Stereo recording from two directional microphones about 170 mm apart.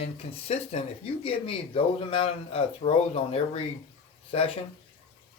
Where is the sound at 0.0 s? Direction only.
35° left (ahead or behind).